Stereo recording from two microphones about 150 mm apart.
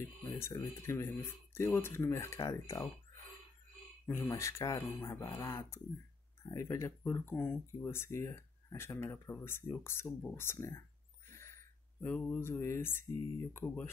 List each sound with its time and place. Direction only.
0.3 s speech: 20° left (ahead or behind)
4.0 s speech: 20° left (ahead or behind)